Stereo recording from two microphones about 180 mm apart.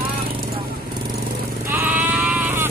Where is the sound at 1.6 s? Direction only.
10° right (ahead or behind).